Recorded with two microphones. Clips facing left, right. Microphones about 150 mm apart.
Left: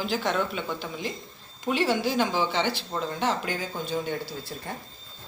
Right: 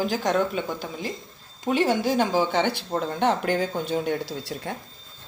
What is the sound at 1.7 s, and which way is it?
Speech, 45° right (ahead or behind).